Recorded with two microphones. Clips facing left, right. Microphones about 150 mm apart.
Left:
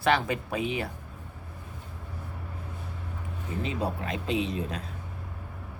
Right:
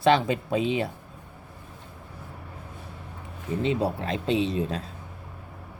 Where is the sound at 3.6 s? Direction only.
30° right (ahead or behind).